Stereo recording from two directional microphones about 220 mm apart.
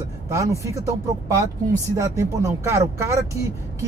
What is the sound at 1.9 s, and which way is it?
Speech, 15° right (ahead or behind).